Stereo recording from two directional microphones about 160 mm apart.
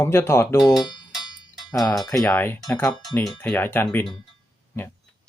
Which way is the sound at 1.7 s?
20° left (ahead or behind).